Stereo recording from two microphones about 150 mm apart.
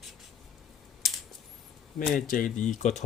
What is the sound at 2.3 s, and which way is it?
Speech, 65° left (ahead or behind).